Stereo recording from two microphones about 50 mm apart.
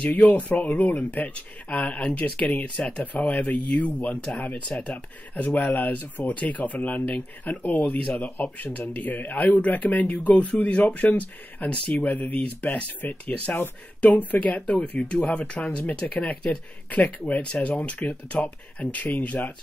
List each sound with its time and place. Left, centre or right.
0.0 s speech: left
16.9 s speech: left